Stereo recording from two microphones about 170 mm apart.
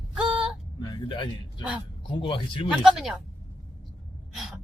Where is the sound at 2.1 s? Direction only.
30° left (ahead or behind).